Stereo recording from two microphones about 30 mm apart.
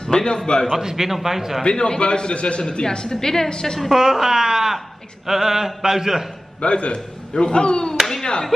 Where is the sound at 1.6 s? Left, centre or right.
Left.